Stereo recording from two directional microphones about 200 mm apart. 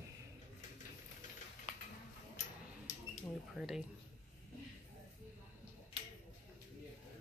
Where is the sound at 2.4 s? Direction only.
35° left (ahead or behind).